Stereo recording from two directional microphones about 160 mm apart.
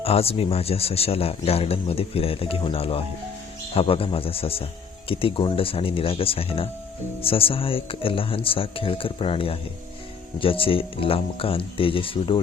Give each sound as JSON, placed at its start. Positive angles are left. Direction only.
{"t": 0.0, "sound": "a man's voice", "side_deg": 40}